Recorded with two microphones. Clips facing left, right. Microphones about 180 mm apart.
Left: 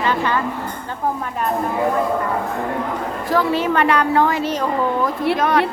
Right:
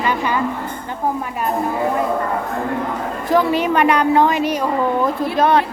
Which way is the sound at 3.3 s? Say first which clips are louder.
Right 2 dB; 15° right (ahead or behind).